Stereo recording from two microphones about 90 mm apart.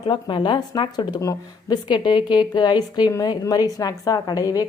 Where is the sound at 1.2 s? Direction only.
40° left (ahead or behind).